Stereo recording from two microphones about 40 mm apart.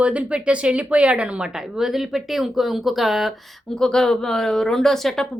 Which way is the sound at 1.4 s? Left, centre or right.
Centre.